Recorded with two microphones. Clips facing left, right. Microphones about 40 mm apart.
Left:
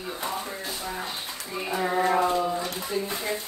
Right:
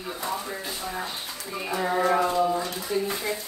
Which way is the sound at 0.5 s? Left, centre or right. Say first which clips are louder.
Right 1 dB; centre.